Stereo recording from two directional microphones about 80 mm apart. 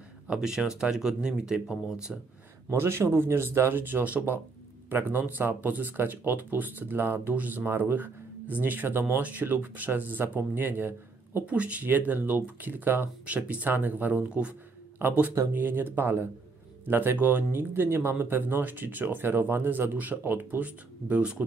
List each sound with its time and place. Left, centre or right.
0.3 s speech: centre
2.7 s speech: right; by 21.5 s centre